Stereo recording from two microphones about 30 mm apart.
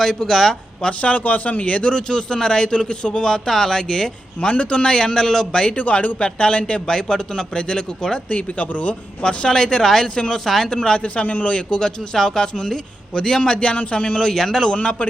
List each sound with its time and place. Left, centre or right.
0.0 s speech: centre
1.0 s a man's voice: left; by 4.1 s centre
4.4 s a man's voice: left
4.8 s a man's voice: left
5.7 s a man's voice: left
6.1 s a man's voice: left
6.8 s a man's voice: left
8.3 s a man's voice: left
10.4 s speech: centre
10.7 s a man's voice: left
10.9 s a man's voice: left
11.5 s a man's voice: left
12.1 s a man's voice: centre; by 14.2 s left
14.3 s speech: centre